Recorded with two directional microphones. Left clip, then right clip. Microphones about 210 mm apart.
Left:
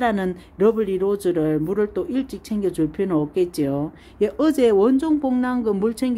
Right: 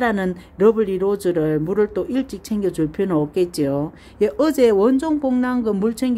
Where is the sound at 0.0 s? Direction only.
Centre (ahead or behind).